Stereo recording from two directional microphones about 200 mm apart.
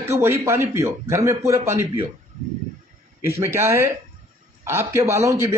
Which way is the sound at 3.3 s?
15° right (ahead or behind).